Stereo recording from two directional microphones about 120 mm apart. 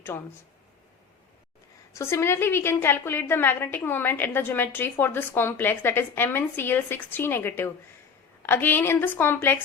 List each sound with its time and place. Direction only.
1.9 s a woman's voice: 25° left (ahead or behind)